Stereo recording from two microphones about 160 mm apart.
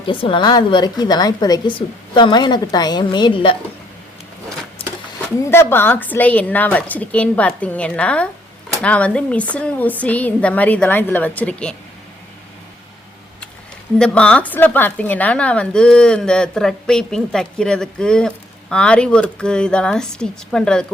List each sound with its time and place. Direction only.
0.1 s a woman's voice: 30° left (ahead or behind)
5.5 s speech: 15° left (ahead or behind)
14.0 s speech: 5° left (ahead or behind)